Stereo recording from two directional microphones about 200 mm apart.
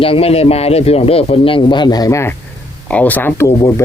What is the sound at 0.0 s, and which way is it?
Speech, 30° left (ahead or behind).